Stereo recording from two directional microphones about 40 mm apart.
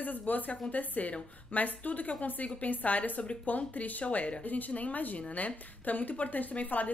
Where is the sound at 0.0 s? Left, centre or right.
Left.